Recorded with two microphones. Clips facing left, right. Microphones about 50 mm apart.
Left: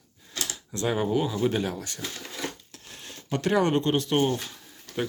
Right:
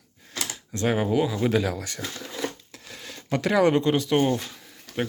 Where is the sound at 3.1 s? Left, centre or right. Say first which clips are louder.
Right 1 dB; right.